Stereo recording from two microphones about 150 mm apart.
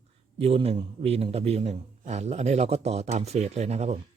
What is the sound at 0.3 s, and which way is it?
A man's voice, 40° right (ahead or behind).